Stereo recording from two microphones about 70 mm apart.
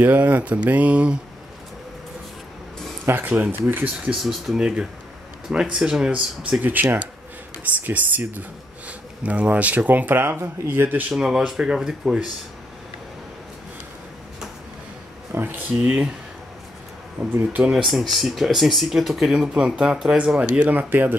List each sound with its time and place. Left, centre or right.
0.0 s speech: right
3.3 s speech: right
4.1 s speech: centre
6.6 s speech: right
11.1 s speech: centre
15.3 s speech: right
17.3 s speech: right
17.6 s speech: centre; by 21.2 s right